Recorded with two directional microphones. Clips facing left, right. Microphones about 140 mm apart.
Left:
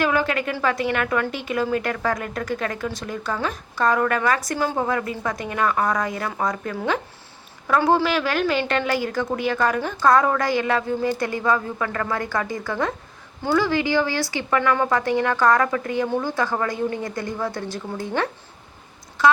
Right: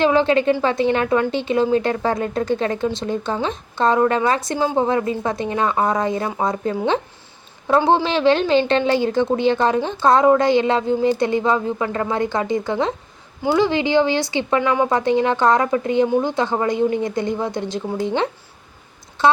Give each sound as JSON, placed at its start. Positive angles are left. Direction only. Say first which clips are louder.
{"t": 0.0, "sound": "a woman's voice", "louder": "right 6 dB", "side_deg": -25}